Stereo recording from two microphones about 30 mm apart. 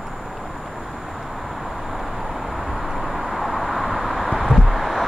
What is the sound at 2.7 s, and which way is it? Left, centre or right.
Vehicle, centre.